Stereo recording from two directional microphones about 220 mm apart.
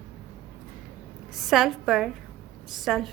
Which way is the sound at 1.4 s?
Centre (ahead or behind).